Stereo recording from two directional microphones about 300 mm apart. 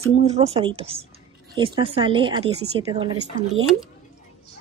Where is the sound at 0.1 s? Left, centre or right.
Right.